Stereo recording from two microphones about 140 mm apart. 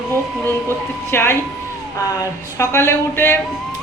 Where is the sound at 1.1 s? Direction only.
15° left (ahead or behind).